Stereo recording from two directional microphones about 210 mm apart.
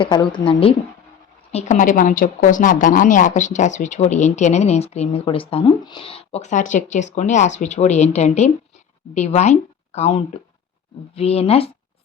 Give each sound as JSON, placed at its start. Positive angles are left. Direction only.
{"t": 0.0, "sound": "a woman's voice", "side_deg": 20}
{"t": 1.5, "sound": "a woman's voice", "side_deg": 35}